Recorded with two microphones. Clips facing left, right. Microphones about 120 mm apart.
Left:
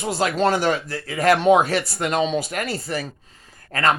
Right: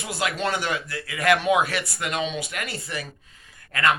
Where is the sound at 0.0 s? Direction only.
35° left (ahead or behind).